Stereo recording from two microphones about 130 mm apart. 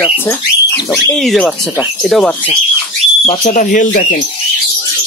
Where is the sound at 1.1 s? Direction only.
5° left (ahead or behind).